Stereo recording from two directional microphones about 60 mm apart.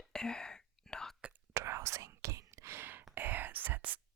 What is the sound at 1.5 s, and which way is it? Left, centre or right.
Whispering, right.